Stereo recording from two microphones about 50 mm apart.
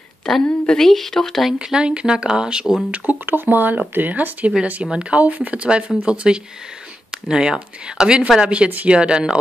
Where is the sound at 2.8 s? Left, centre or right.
Right.